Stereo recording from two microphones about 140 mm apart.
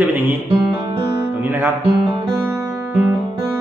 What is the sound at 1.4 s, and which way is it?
Music, 15° right (ahead or behind).